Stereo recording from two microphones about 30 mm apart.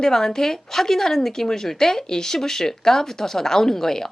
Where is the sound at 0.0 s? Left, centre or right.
Centre.